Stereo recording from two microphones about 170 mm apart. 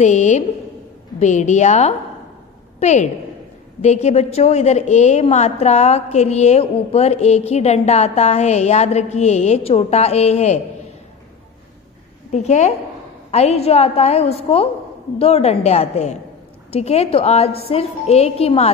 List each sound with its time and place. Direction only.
0.0 s a woman's voice: 45° left (ahead or behind)
12.3 s a woman's voice: 40° left (ahead or behind)